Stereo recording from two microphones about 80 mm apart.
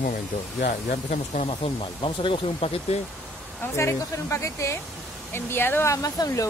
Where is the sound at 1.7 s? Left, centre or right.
Left.